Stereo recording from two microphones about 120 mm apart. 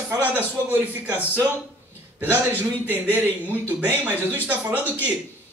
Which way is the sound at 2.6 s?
15° right (ahead or behind).